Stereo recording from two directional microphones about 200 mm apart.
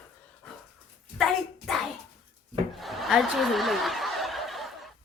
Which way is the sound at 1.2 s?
Centre (ahead or behind).